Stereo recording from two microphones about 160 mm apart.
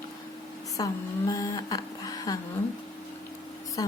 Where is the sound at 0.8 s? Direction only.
25° left (ahead or behind).